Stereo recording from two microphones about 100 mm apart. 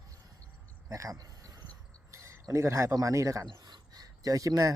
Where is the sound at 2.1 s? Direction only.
30° right (ahead or behind).